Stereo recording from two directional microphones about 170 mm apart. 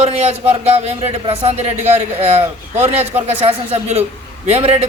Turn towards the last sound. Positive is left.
turn(degrees=-35)  # may be behind; listen again after turning